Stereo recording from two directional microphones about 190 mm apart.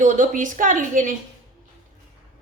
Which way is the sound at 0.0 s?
45° right (ahead or behind).